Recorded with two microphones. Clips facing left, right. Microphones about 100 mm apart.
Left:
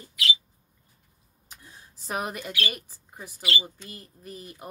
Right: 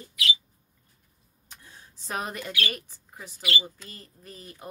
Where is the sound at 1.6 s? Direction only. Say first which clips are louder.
Left 1 dB; 10° left (ahead or behind).